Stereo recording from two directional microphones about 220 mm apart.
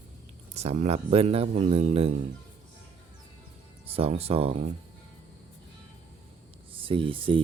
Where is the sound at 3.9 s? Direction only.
25° right (ahead or behind).